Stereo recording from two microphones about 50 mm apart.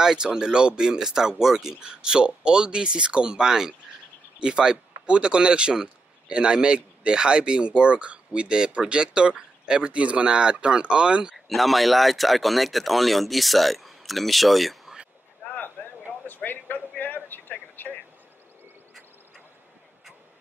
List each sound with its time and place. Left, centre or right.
0.0 s speech: centre
11.4 s speech: centre
15.8 s a sound: left